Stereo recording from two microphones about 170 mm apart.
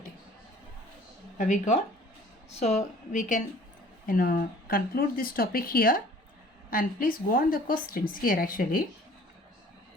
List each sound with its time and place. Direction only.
1.4 s a woman's voice: 45° left (ahead or behind)